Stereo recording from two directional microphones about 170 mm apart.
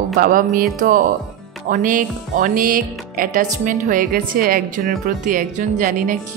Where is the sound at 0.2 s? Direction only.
55° right (ahead or behind).